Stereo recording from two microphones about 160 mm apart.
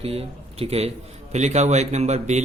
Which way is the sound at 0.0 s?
40° right (ahead or behind).